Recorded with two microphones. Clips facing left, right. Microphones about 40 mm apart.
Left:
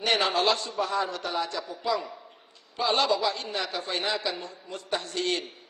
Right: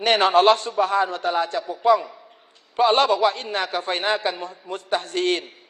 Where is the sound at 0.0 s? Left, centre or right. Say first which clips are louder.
Right 8 dB; right.